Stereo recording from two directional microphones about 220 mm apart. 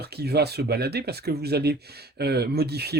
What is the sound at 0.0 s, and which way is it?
Speech, 45° right (ahead or behind).